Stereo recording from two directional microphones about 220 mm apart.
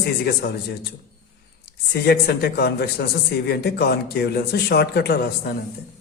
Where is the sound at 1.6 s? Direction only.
45° left (ahead or behind).